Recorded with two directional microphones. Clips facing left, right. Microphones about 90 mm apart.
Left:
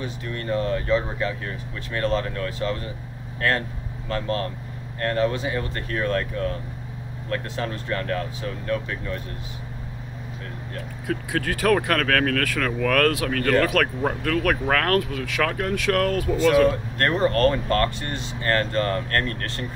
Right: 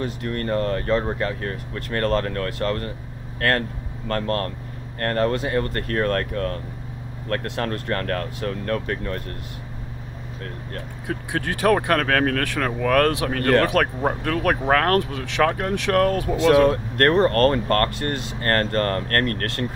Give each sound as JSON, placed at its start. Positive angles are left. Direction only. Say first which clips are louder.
{"t": 0.0, "sound": "speech", "louder": "right 4 dB", "side_deg": -50}
{"t": 11.1, "sound": "speech", "louder": "left 1 dB", "side_deg": -25}
{"t": 16.6, "sound": "speech", "louder": "right 3 dB", "side_deg": -55}